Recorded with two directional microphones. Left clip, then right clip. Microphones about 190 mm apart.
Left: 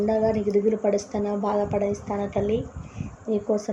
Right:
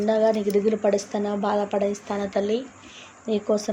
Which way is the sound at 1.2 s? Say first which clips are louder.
Right 1 dB; 65° right (ahead or behind).